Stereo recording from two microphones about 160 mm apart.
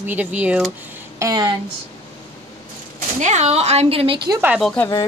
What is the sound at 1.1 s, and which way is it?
Speech, 20° right (ahead or behind).